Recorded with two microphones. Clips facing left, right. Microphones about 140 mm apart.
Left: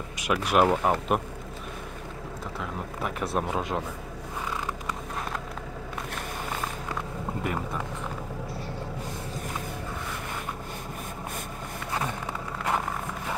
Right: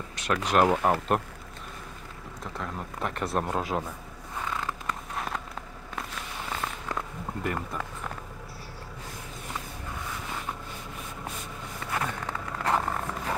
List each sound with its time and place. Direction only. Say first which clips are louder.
0.2 s speech: left 1 dB; 10° left (ahead or behind)
2.6 s speech: even; 5° left (ahead or behind)
4.5 s a sound: right 1 dB; 10° left (ahead or behind)
11.9 s vehicle: even; 15° left (ahead or behind)